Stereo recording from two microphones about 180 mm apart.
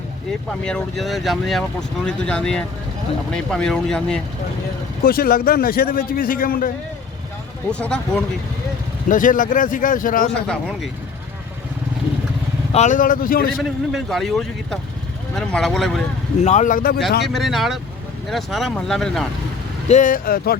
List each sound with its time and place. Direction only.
0.3 s speech: 5° left (ahead or behind)
5.0 s a man's voice: 55° left (ahead or behind)
7.7 s speech: 5° left (ahead or behind)
9.0 s a man's voice: 45° left (ahead or behind)
12.7 s a man's voice: 40° left (ahead or behind)
13.6 s speech: centre (ahead or behind)
16.4 s a man's voice: 40° left (ahead or behind)
17.2 s speech: centre (ahead or behind)
19.9 s a man's voice: 45° left (ahead or behind)